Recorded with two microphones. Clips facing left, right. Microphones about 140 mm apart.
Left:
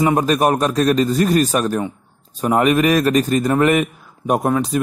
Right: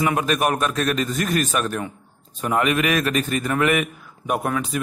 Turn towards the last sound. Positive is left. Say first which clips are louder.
# left 6 dB
turn(degrees=35)  # may be behind; listen again after turning